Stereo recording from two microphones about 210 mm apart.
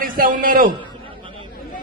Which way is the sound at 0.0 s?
40° right (ahead or behind).